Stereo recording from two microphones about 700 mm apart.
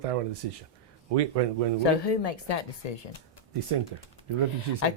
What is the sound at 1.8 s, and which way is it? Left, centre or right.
Speech, left.